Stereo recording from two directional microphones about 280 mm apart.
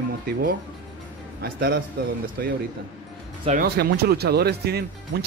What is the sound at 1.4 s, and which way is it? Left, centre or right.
Speech, right.